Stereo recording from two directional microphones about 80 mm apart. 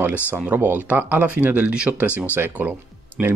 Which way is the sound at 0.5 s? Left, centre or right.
Right.